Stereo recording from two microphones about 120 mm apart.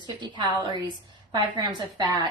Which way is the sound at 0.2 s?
40° right (ahead or behind).